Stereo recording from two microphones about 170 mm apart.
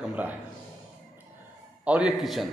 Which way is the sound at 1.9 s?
5° right (ahead or behind).